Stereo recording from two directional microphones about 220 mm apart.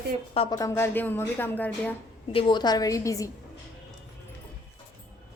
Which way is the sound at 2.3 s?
25° left (ahead or behind).